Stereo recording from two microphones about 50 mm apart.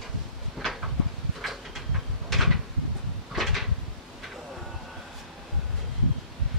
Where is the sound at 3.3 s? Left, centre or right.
Centre.